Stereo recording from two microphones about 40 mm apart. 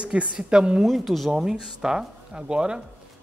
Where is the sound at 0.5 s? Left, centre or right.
Right.